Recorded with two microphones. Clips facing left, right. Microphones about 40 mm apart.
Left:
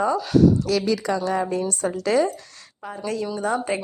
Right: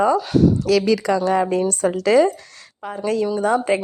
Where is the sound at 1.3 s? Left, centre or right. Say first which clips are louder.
Right 5 dB; right.